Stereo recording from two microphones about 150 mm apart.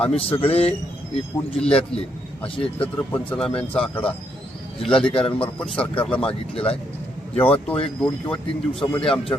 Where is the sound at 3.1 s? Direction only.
10° left (ahead or behind).